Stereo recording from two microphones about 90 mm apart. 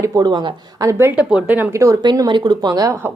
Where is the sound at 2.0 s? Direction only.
50° right (ahead or behind).